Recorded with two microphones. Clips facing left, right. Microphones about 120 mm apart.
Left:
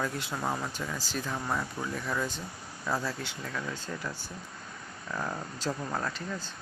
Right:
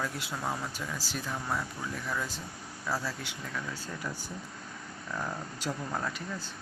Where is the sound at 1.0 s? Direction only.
10° right (ahead or behind).